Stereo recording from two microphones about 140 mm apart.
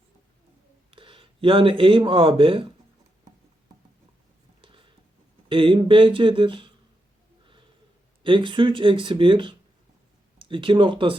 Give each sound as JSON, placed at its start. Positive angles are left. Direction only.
{"t": 0.9, "sound": "speech", "side_deg": -40}
{"t": 4.6, "sound": "a sound", "side_deg": -40}
{"t": 5.5, "sound": "speech", "side_deg": -40}
{"t": 8.2, "sound": "speech", "side_deg": -35}